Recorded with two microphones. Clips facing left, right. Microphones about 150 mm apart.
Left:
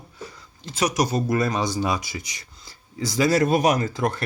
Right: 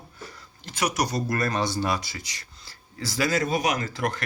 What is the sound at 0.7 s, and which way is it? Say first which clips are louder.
Speech: left 4 dB; 20° left (ahead or behind).